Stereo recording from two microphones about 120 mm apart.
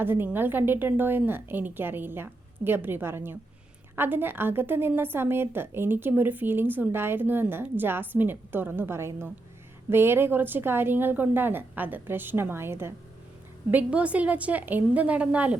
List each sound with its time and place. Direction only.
0.0 s a woman's voice: 15° right (ahead or behind)